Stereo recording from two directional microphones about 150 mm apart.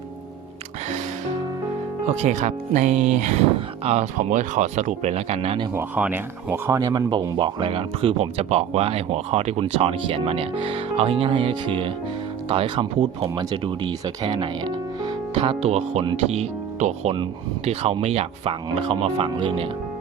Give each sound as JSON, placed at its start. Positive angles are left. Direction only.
{"t": 2.2, "sound": "speech", "side_deg": -55}
{"t": 5.7, "sound": "speech", "side_deg": -10}